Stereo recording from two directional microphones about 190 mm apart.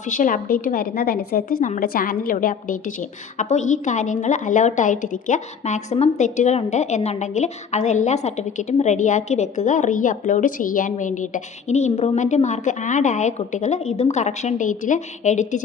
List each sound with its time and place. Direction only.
0.1 s a woman's voice: 45° left (ahead or behind)